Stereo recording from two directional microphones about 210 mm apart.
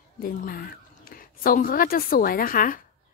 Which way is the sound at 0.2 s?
45° left (ahead or behind).